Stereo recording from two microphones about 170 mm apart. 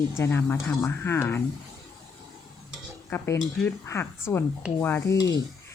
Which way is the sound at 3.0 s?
15° left (ahead or behind).